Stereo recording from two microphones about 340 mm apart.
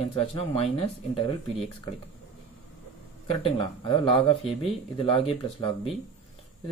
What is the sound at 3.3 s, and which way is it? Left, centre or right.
Speech, centre.